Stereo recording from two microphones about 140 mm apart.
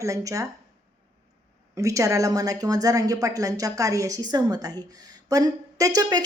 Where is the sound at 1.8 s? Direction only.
20° right (ahead or behind).